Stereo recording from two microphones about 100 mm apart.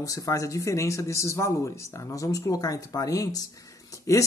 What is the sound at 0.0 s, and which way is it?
A man's voice, 35° left (ahead or behind).